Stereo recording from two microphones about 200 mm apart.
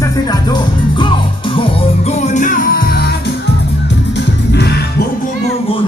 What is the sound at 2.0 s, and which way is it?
Music, 35° left (ahead or behind).